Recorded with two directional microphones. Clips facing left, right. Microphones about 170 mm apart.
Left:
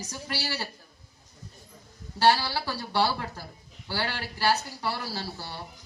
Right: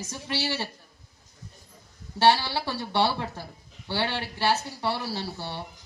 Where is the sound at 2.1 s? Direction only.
25° right (ahead or behind).